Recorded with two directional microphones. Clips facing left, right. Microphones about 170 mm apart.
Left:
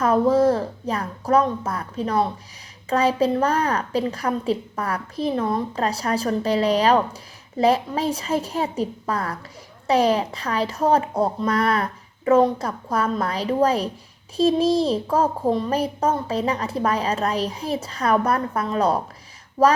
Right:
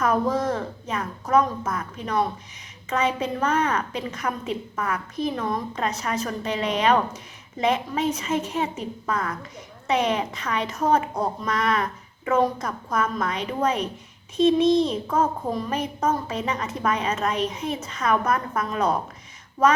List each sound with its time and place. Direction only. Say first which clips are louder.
0.0 s a child's voice: left 6 dB; 30° left (ahead or behind)